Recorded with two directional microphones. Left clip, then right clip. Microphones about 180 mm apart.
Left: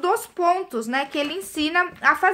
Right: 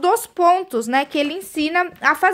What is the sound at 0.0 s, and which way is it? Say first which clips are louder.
A woman's voice: right 5 dB; 55° right (ahead or behind).